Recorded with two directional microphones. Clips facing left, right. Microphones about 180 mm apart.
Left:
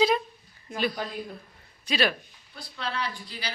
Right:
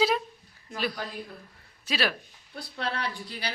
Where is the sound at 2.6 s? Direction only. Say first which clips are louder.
Right 1 dB; 60° right (ahead or behind).